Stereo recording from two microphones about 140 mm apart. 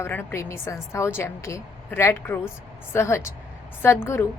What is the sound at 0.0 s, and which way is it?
A woman's voice, 15° left (ahead or behind).